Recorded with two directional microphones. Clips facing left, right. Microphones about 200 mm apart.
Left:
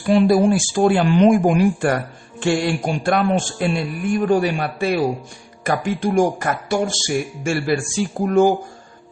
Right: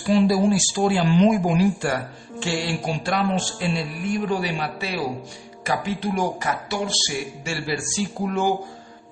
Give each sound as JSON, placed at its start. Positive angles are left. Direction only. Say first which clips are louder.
{"t": 0.0, "sound": "a man's voice", "louder": "left 4 dB", "side_deg": 60}